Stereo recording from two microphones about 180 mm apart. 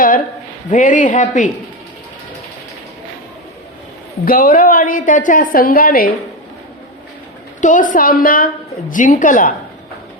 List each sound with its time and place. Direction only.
0.7 s a woman's voice: 45° left (ahead or behind)
4.3 s a woman's voice: 50° left (ahead or behind)
7.6 s a woman's voice: 45° left (ahead or behind)